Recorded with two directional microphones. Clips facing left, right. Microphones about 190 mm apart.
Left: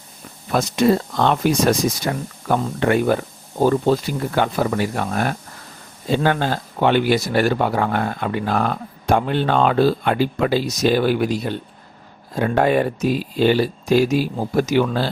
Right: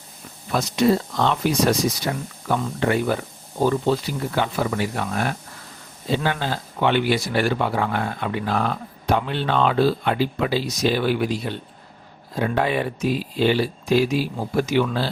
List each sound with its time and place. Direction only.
0.5 s speech: 50° left (ahead or behind)